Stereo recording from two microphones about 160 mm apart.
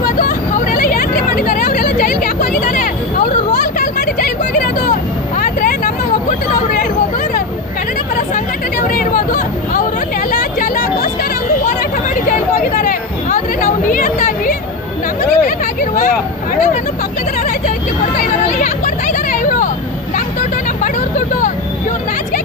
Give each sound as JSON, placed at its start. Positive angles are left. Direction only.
{"t": 0.0, "sound": "vehicle", "side_deg": 60}
{"t": 1.8, "sound": "hubbub", "side_deg": 60}
{"t": 3.5, "sound": "vehicle", "side_deg": 60}
{"t": 8.9, "sound": "a sound", "side_deg": 60}
{"t": 18.2, "sound": "vehicle", "side_deg": 50}